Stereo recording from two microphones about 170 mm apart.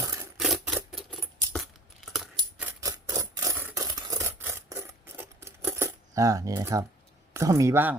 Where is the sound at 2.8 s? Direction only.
20° right (ahead or behind).